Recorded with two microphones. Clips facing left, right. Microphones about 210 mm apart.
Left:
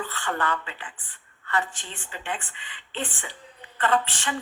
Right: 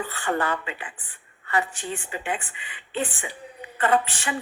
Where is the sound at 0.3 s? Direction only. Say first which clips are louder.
Right 3 dB; 20° right (ahead or behind).